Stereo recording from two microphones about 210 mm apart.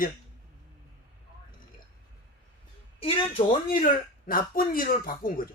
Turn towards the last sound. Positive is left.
turn(degrees=45)  # may be behind; listen again after turning